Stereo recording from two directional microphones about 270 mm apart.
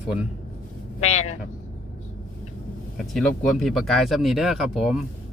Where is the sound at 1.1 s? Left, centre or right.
Left.